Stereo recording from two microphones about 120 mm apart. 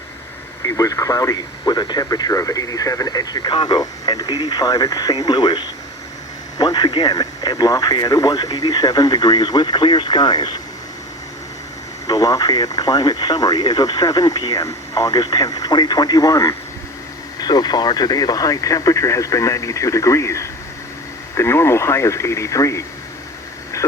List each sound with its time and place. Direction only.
0.6 s speech: 30° left (ahead or behind)
12.0 s speech: 30° left (ahead or behind)